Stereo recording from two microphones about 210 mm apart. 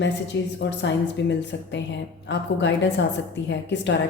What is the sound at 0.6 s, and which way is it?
A woman's voice, 55° left (ahead or behind).